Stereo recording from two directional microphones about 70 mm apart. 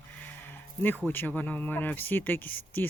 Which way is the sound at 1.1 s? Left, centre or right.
Left.